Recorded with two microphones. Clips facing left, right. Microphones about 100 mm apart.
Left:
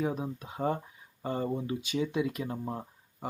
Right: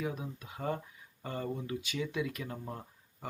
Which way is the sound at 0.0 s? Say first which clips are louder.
Left 6 dB; 30° left (ahead or behind).